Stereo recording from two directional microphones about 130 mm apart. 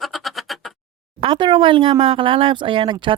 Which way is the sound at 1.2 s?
40° right (ahead or behind).